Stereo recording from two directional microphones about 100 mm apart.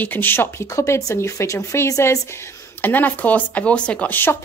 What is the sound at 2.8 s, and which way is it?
Speech, 15° left (ahead or behind).